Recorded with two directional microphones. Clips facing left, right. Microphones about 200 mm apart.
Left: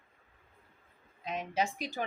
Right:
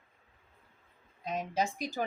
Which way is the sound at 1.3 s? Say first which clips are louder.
Right 1 dB; 40° right (ahead or behind).